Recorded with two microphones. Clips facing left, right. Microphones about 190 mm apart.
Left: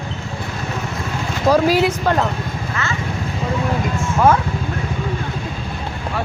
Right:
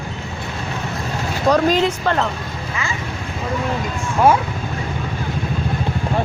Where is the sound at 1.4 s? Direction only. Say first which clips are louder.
Left 1 dB; 5° left (ahead or behind).